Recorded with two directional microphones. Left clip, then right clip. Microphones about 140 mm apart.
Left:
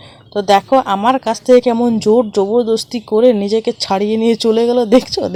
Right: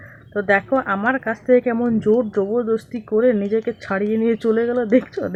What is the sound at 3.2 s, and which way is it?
Speech, 45° left (ahead or behind).